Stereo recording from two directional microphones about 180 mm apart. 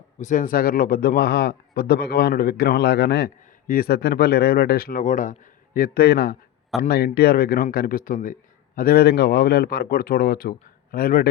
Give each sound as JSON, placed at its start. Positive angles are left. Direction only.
{"t": 0.2, "sound": "a man's voice", "side_deg": 45}